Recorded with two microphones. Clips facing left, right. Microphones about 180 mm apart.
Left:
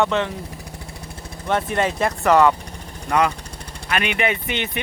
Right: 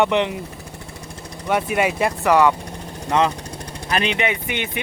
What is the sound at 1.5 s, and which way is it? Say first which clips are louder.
Speech: right 1 dB; 10° right (ahead or behind).